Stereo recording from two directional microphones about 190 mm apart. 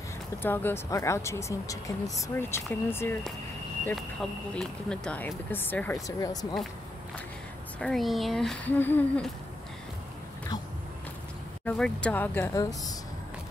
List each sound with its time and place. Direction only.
0.4 s speech: 10° left (ahead or behind)
6.0 s speech: 20° left (ahead or behind)
7.8 s speech: centre (ahead or behind)
11.6 s speech: 5° left (ahead or behind)